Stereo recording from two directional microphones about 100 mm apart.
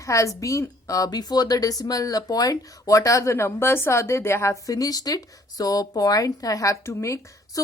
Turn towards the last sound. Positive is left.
turn(degrees=30)  # may be behind; listen again after turning